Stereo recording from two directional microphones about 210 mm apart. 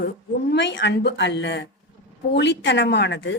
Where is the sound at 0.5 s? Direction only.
55° left (ahead or behind).